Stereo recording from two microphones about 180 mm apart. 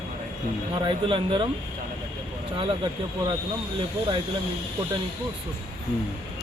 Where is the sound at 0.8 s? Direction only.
30° right (ahead or behind).